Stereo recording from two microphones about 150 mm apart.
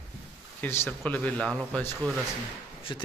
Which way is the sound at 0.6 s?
15° left (ahead or behind).